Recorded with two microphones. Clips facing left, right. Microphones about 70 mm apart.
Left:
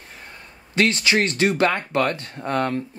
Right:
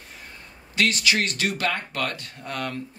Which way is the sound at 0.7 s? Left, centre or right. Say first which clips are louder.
Left 4 dB; left.